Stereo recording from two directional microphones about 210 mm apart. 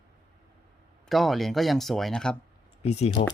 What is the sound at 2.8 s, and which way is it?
Speech, 30° left (ahead or behind).